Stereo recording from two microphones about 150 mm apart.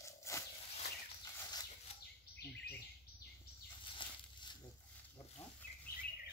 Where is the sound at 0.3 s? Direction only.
20° left (ahead or behind).